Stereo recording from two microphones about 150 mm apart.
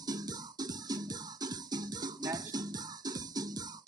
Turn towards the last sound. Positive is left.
turn(degrees=-25)  # may be behind; listen again after turning